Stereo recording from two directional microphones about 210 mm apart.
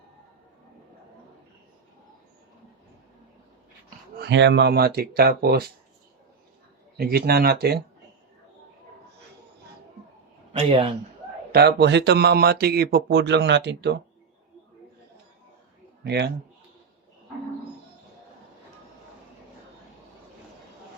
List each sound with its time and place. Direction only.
3.8 s speech: 55° right (ahead or behind)
6.9 s speech: 45° right (ahead or behind)
10.5 s speech: 25° right (ahead or behind)
11.5 s speech: 50° right (ahead or behind)
16.0 s speech: 55° right (ahead or behind)